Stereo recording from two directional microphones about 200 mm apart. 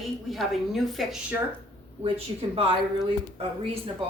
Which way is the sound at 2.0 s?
30° right (ahead or behind).